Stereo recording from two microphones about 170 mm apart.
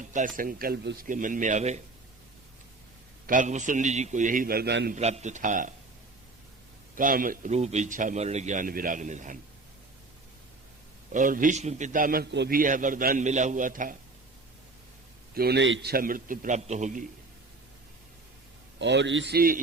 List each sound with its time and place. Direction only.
0.0 s a man's voice: 50° right (ahead or behind)
3.2 s a man's voice: 50° right (ahead or behind); by 4.9 s 75° right (ahead or behind)
4.9 s a man's voice: 40° right (ahead or behind)
6.9 s a man's voice: 55° right (ahead or behind)
11.1 s a man's voice: 50° right (ahead or behind)
15.4 s a man's voice: 80° right; by 17.1 s 45° right (ahead or behind)
18.8 s a man's voice: 90° right; by 19.5 s 65° right (ahead or behind)